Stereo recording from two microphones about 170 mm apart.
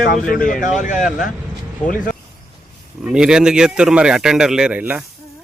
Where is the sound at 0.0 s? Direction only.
55° left (ahead or behind).